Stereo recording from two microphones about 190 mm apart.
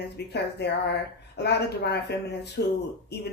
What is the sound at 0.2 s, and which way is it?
Speech, 60° left (ahead or behind).